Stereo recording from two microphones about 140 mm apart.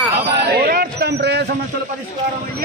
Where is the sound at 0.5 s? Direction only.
90° right.